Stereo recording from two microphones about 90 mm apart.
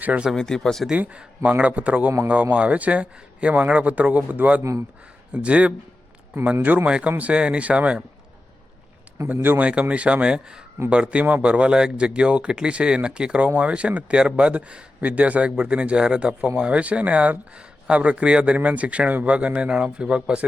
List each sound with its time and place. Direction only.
0.0 s speech: 15° right (ahead or behind)
0.3 s speech: 5° left (ahead or behind)
0.9 s speech: 15° right (ahead or behind)
9.1 s a man's voice: 25° right (ahead or behind)